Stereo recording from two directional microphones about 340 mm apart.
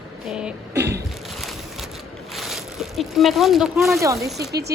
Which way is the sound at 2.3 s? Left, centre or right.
Centre.